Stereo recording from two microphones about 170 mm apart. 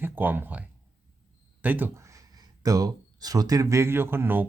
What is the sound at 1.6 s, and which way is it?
Speech, 10° right (ahead or behind).